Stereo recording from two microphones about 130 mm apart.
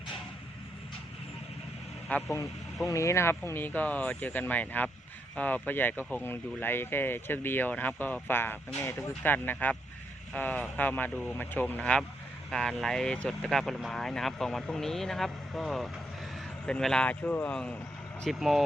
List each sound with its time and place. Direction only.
2.1 s speech: 10° left (ahead or behind)
2.8 s speech: 25° left (ahead or behind); by 18.6 s centre (ahead or behind)